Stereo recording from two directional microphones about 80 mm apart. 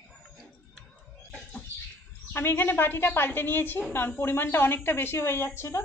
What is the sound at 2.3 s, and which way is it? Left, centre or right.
A woman's voice, left.